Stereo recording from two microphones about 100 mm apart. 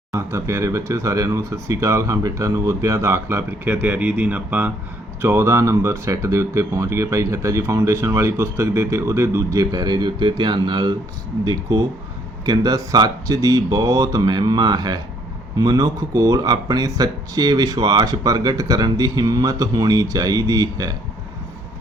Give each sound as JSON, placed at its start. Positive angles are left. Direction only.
{"t": 0.1, "sound": "speech", "side_deg": -30}
{"t": 12.5, "sound": "speech", "side_deg": -40}